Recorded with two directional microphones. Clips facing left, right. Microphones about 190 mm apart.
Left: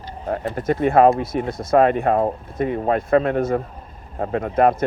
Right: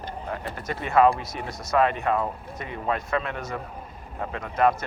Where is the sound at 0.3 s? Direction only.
45° left (ahead or behind).